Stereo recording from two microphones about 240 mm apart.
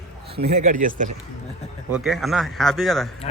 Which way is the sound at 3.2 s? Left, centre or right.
Left.